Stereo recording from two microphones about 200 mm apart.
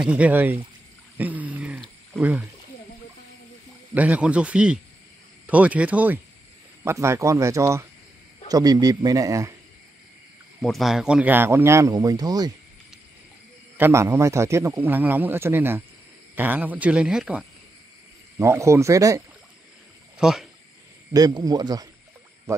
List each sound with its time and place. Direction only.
0.0 s a man's voice: 5° right (ahead or behind)
1.1 s a sound: 10° right (ahead or behind)
3.9 s a man's voice: 5° right (ahead or behind)
10.6 s a man's voice: centre (ahead or behind); by 12.5 s 20° right (ahead or behind)
13.7 s a man's voice: 10° right (ahead or behind)
18.4 s a man's voice: 15° right (ahead or behind)
20.2 s speech: 5° right (ahead or behind)
21.1 s a man's voice: 20° right (ahead or behind)